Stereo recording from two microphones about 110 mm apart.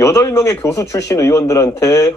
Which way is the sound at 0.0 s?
25° left (ahead or behind).